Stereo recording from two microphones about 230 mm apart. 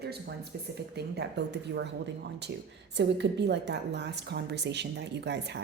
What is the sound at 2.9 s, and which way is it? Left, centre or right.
A woman's voice, right.